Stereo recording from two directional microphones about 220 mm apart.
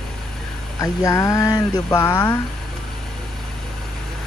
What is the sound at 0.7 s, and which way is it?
Speech, 15° left (ahead or behind).